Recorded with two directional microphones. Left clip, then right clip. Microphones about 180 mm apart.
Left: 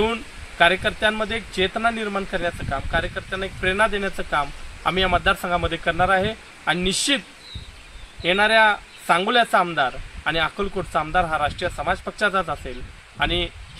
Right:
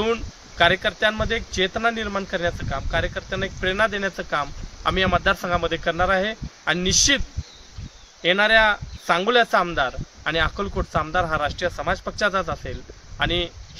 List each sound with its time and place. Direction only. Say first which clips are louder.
0.0 s speech: even; 25° right (ahead or behind)